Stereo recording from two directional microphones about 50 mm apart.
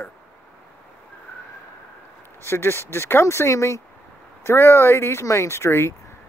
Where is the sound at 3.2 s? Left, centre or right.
Left.